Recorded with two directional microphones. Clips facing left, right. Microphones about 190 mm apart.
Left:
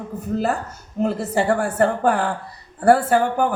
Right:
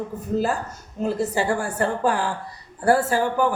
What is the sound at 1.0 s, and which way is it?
A woman's voice, 60° left (ahead or behind).